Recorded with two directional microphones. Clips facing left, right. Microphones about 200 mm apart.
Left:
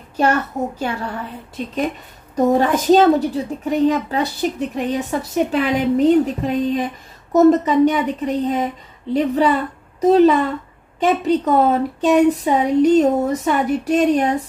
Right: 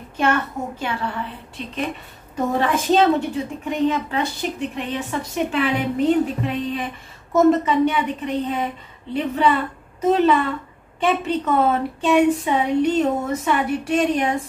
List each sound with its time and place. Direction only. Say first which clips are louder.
0.2 s a woman's voice: left 3 dB; 40° left (ahead or behind)